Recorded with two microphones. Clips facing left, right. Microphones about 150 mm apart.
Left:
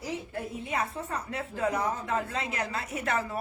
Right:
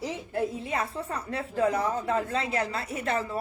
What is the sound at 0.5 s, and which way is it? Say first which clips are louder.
A woman's voice: right 1 dB; 35° right (ahead or behind).